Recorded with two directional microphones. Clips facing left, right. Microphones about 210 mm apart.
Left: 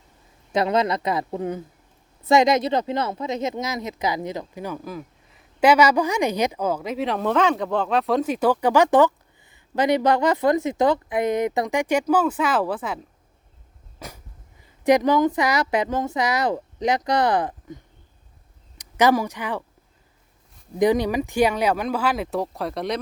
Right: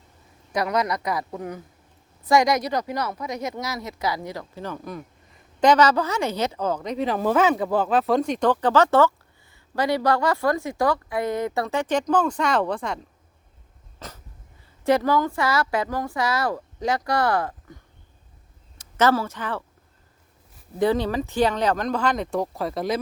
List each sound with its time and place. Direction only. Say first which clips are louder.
0.5 s speech: left 3 dB; 25° left (ahead or behind); by 13.0 s 5° left (ahead or behind)
14.0 s dog: left 1 dB; 10° left (ahead or behind)
14.8 s speech: left 3 dB; 20° left (ahead or behind)
20.7 s speech: left 2 dB; 15° left (ahead or behind); by 23.0 s centre (ahead or behind)